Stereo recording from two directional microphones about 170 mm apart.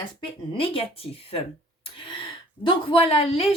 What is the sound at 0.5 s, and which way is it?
Speech, 35° left (ahead or behind).